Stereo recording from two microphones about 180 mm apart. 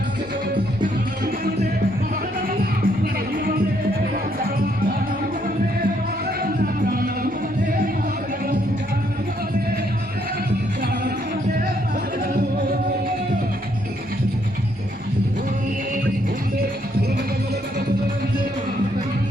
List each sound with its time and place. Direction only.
2.5 s music: 55° right (ahead or behind)
6.8 s music: 55° right (ahead or behind)